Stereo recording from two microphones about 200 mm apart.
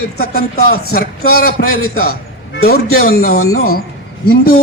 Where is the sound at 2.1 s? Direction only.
50° left (ahead or behind).